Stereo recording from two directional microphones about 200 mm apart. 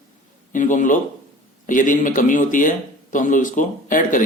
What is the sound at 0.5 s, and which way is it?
Speech, 40° left (ahead or behind).